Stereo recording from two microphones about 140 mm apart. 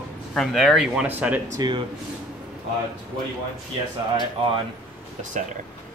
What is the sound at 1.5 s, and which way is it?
Speech, 30° right (ahead or behind).